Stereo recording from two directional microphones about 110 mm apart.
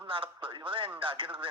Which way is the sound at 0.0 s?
50° right (ahead or behind).